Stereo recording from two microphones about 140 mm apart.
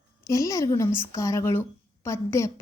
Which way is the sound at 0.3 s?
25° left (ahead or behind).